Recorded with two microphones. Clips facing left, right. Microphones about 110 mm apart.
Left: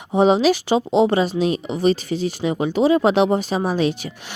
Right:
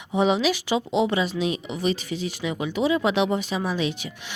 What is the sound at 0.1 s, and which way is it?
A woman's voice, 35° left (ahead or behind).